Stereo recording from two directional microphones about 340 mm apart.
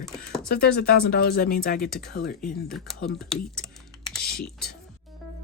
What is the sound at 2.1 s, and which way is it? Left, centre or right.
Speech, left.